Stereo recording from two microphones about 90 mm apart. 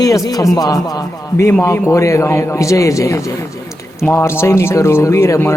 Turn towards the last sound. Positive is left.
turn(degrees=30)  # may be behind; listen again after turning